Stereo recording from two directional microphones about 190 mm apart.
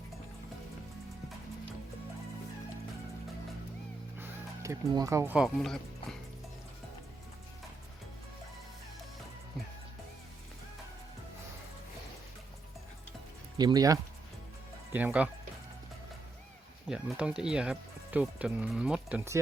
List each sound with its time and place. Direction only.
4.2 s speech: 15° right (ahead or behind); by 6.1 s centre (ahead or behind)
13.6 s speech: 20° right (ahead or behind)
14.9 s speech: 10° right (ahead or behind)
16.9 s speech: 5° right (ahead or behind)